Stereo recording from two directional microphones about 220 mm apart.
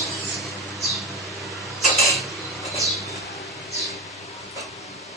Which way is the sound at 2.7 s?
Centre (ahead or behind).